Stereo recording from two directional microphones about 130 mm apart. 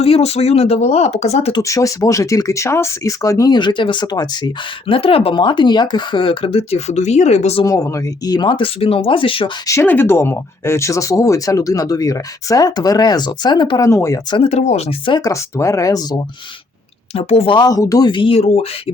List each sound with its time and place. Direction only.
0.0 s speech: 50° left (ahead or behind)
1.6 s speech: 25° left (ahead or behind)
4.9 s speech: 45° left (ahead or behind)
7.6 s speech: 25° left (ahead or behind)
9.6 s speech: 20° left (ahead or behind); by 13.8 s 35° left (ahead or behind)
13.8 s speech: 25° left (ahead or behind)
14.4 s speech: 55° left (ahead or behind)
15.0 s speech: 35° left (ahead or behind)
15.3 s speech: 25° left (ahead or behind)
17.2 s speech: 50° left (ahead or behind)